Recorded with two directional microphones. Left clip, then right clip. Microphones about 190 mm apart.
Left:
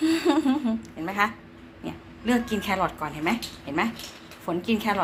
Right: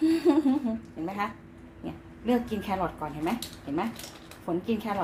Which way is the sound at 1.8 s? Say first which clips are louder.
Left 3 dB; 5° left (ahead or behind).